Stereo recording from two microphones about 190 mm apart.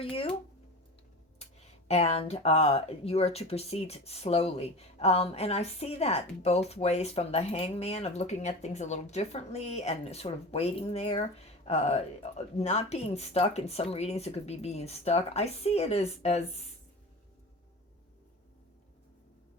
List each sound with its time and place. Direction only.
0.0 s speech: 30° left (ahead or behind)
1.9 s speech: 35° left (ahead or behind)